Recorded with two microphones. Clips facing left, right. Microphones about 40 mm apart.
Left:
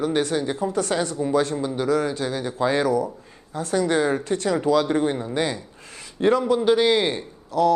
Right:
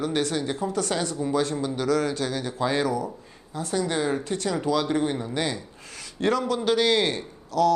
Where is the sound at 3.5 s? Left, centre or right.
Left.